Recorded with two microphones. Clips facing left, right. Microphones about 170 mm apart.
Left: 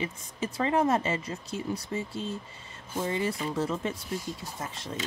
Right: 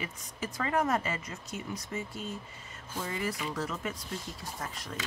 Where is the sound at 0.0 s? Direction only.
25° left (ahead or behind).